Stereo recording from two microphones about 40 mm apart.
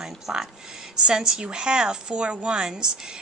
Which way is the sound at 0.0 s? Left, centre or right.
Centre.